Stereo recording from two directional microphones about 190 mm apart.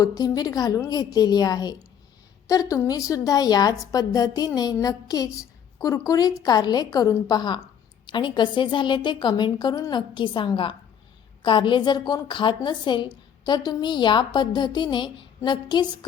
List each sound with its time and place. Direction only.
0.0 s a woman's voice: 20° left (ahead or behind)